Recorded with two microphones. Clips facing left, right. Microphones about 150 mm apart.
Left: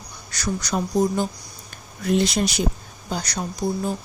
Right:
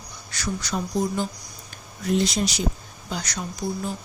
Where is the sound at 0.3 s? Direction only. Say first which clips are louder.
Left 3 dB; 40° left (ahead or behind).